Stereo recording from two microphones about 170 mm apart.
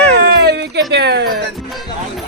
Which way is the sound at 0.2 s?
75° right (ahead or behind).